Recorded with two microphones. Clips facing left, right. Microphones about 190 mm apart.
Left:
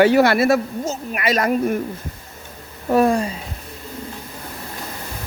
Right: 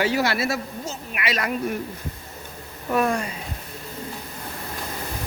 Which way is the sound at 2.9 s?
35° left (ahead or behind).